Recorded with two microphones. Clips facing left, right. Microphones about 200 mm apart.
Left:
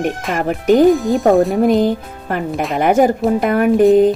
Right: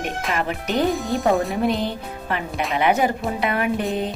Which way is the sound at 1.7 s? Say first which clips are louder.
Left 11 dB; 45° left (ahead or behind).